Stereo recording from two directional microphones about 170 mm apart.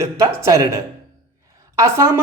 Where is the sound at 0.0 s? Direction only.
20° right (ahead or behind).